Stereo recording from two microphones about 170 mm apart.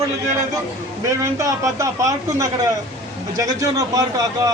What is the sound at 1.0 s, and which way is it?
A man's voice, 20° right (ahead or behind).